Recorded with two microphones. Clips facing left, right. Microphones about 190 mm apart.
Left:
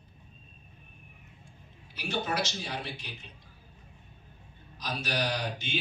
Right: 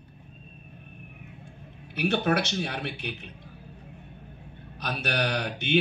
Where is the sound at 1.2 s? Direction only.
65° right (ahead or behind).